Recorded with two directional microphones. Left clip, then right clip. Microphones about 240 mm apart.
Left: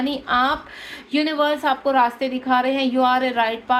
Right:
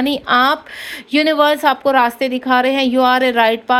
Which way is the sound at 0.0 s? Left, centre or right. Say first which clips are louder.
Right 6 dB; right.